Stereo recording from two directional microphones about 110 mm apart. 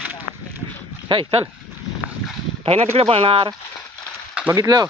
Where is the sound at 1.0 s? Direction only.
45° right (ahead or behind).